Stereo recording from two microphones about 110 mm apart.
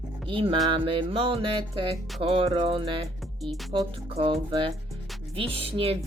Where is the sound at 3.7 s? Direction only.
55° right (ahead or behind).